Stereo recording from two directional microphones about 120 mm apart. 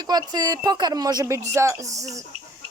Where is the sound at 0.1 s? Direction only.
35° right (ahead or behind).